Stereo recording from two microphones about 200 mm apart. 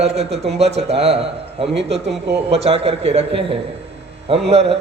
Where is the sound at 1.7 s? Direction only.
60° right (ahead or behind).